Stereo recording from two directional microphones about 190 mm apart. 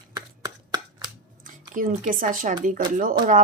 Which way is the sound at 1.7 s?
45° right (ahead or behind).